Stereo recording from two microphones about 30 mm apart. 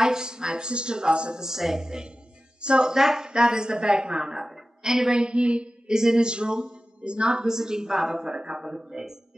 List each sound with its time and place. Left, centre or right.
0.0 s a man's voice: right
1.4 s speech: centre
2.6 s a woman's voice: right
2.9 s a woman's voice: centre
4.8 s speech: centre
5.1 s a woman's voice: right
5.9 s a woman's voice: right
7.4 s a woman's voice: centre
8.4 s a woman's voice: right
8.6 s speech: right